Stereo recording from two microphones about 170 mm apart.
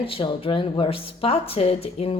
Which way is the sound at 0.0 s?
30° left (ahead or behind).